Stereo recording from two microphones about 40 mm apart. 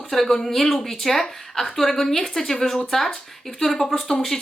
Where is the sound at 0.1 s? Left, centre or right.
Centre.